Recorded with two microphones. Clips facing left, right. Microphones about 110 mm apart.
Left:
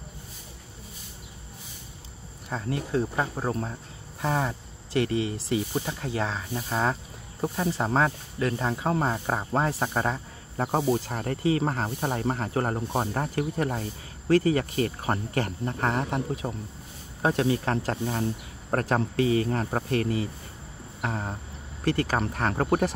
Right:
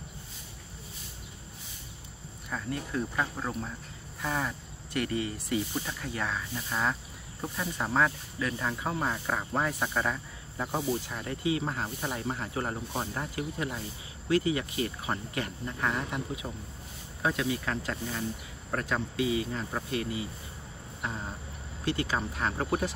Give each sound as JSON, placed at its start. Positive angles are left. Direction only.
{"t": 2.5, "sound": "speech", "side_deg": 30}
{"t": 21.0, "sound": "a sound", "side_deg": 60}
{"t": 21.8, "sound": "speech", "side_deg": 45}